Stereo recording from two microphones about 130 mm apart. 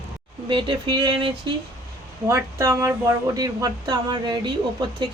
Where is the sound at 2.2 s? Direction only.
20° right (ahead or behind).